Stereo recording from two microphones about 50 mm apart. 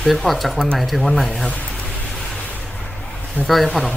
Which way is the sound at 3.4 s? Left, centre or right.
Centre.